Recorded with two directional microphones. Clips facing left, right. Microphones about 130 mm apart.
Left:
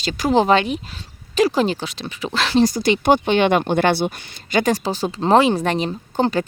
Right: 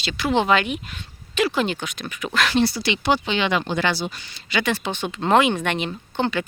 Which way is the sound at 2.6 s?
45° left (ahead or behind).